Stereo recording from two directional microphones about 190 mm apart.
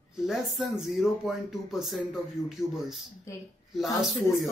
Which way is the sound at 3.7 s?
Centre (ahead or behind).